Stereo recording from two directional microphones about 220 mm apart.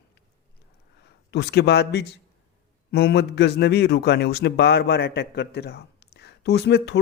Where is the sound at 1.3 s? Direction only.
50° left (ahead or behind).